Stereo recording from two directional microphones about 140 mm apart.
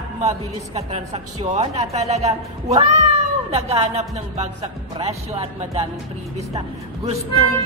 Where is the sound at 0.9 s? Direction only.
50° right (ahead or behind).